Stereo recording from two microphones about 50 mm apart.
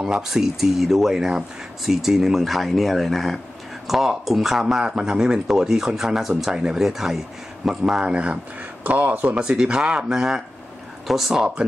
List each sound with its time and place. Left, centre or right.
0.0 s speech: centre
8.0 s speech: right
9.4 s speech: centre